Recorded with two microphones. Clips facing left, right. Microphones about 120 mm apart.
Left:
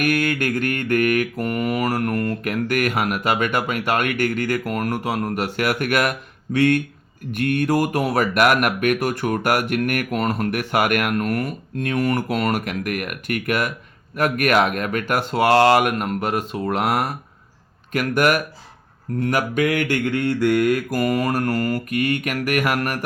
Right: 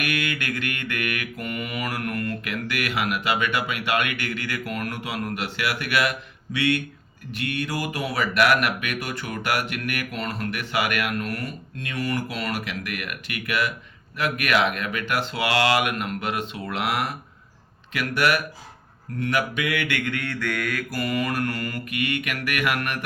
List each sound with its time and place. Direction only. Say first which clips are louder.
0.0 s speech: left 7 dB; 45° left (ahead or behind)
19.2 s mantra: left 5 dB; 40° left (ahead or behind)
20.9 s mantra: left 5 dB; 45° left (ahead or behind)